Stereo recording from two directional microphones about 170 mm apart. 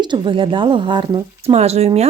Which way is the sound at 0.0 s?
30° right (ahead or behind).